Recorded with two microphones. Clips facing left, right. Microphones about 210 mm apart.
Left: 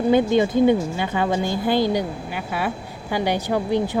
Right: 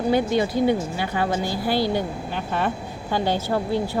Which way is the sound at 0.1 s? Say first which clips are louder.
Left 4 dB; 20° left (ahead or behind).